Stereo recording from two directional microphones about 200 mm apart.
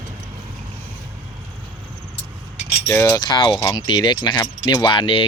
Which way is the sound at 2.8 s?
10° left (ahead or behind).